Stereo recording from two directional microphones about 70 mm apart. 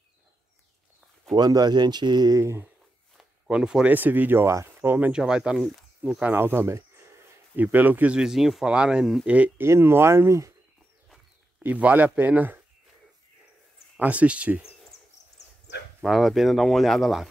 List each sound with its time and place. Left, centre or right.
1.3 s speech: right
3.4 s speech: centre
3.9 s speech: right
5.1 s speech: centre
6.2 s speech: right
7.5 s speech: right
8.2 s speech: centre
9.6 s speech: right
11.6 s speech: right
13.9 s speech: right
16.0 s speech: centre